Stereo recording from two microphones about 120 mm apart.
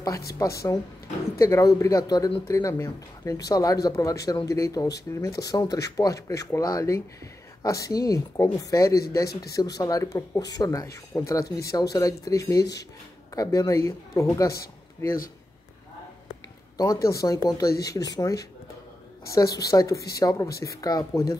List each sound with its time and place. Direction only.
0.0 s speech: 25° left (ahead or behind)
16.7 s speech: 30° left (ahead or behind)